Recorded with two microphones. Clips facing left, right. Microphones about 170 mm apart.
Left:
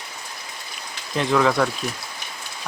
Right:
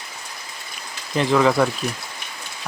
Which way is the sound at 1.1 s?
Centre (ahead or behind).